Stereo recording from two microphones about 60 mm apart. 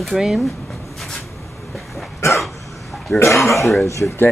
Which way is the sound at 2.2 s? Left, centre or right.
Left.